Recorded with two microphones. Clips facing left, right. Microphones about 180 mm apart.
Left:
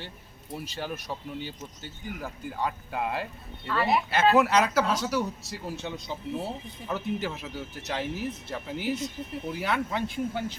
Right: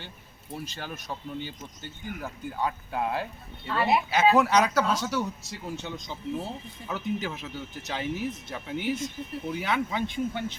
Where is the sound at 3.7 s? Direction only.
20° right (ahead or behind).